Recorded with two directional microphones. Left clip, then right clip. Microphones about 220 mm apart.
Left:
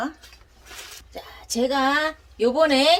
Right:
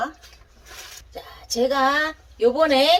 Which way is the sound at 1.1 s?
35° left (ahead or behind).